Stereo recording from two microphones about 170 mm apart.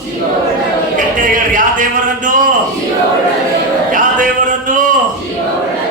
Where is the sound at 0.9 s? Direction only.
50° right (ahead or behind).